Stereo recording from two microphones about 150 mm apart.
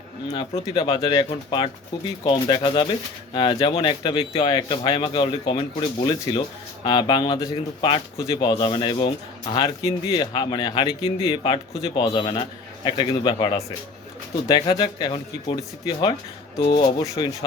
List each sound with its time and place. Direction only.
0.5 s speech: 35° left (ahead or behind)